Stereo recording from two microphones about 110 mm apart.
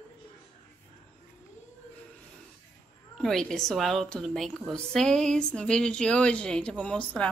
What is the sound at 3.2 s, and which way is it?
A woman's voice, 5° left (ahead or behind).